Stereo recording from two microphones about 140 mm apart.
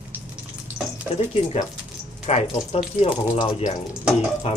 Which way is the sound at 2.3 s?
50° left (ahead or behind).